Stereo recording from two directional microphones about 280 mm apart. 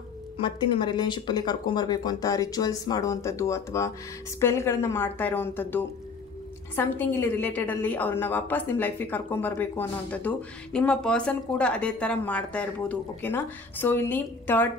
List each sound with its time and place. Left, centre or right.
0.4 s a woman's voice: centre